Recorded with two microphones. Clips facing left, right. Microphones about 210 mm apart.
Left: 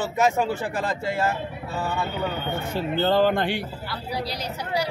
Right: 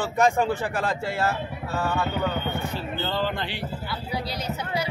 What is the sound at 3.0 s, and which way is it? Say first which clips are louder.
Speech: left 9 dB; 50° left (ahead or behind).